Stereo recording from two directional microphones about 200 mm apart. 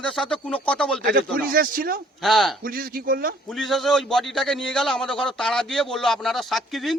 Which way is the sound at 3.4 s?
Centre (ahead or behind).